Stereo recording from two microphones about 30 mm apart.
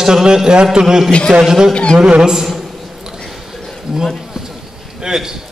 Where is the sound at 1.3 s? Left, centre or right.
Right.